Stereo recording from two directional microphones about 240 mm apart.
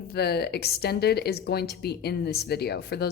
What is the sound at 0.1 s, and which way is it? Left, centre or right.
Speech, left.